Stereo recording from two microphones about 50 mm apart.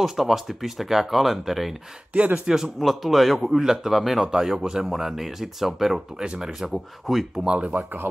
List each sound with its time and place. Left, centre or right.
0.0 s speech: centre
2.1 s speech: right
2.4 s speech: centre
7.4 s speech: right